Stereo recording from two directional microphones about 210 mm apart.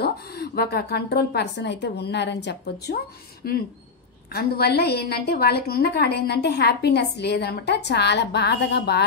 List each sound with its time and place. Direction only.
0.0 s a woman's voice: 50° left (ahead or behind)